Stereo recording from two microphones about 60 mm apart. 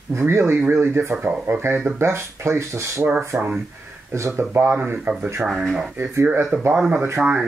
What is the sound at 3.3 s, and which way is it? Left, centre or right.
Speech, right.